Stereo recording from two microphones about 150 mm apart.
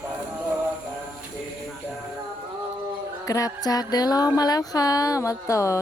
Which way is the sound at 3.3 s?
25° left (ahead or behind).